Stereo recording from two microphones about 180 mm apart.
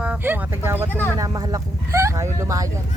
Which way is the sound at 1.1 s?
20° right (ahead or behind).